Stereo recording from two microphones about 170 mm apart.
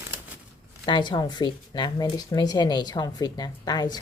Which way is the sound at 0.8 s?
25° left (ahead or behind).